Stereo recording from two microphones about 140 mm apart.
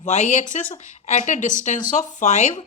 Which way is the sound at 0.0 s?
60° left (ahead or behind).